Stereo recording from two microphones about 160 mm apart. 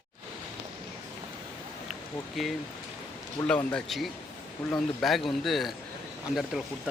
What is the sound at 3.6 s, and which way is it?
Speech, 5° left (ahead or behind).